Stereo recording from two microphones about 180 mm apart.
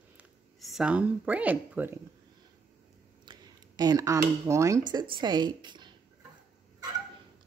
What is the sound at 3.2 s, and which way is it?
A woman's voice, 20° right (ahead or behind).